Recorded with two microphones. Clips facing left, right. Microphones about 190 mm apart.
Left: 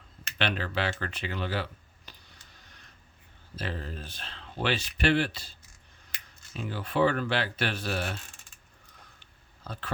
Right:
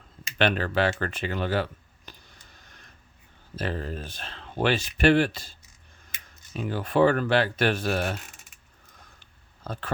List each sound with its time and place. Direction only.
0.3 s speech: 50° right (ahead or behind)
2.1 s a sound: 45° right (ahead or behind)
3.5 s speech: 50° right (ahead or behind)
9.7 s speech: 45° right (ahead or behind)